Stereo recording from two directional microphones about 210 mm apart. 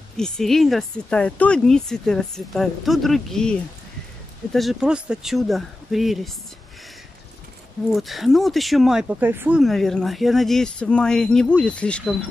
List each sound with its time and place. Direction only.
0.2 s speech: centre (ahead or behind)
7.9 s speech: centre (ahead or behind)